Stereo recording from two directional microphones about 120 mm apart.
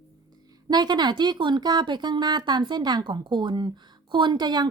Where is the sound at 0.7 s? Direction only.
35° right (ahead or behind).